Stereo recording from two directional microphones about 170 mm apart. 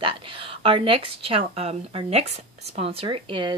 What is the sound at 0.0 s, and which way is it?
A woman's voice, 30° right (ahead or behind).